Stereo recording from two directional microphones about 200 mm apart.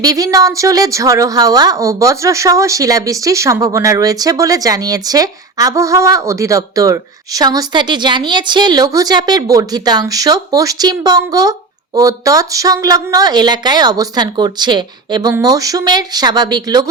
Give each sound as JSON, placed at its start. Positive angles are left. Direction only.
{"t": 0.0, "sound": "a woman's voice", "side_deg": -15}